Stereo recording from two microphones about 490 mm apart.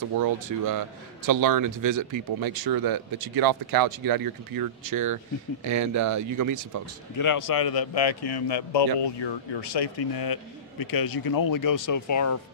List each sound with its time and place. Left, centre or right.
0.5 s speech: right
7.2 s speech: left